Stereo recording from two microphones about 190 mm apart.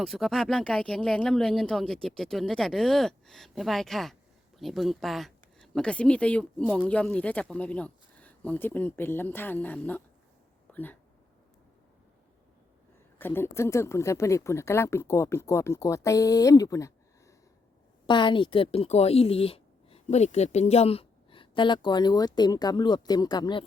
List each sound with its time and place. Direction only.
0.0 s speech: centre (ahead or behind)
10.7 s a sound: 10° left (ahead or behind)
13.1 s speech: 10° left (ahead or behind)
18.0 s speech: 25° left (ahead or behind)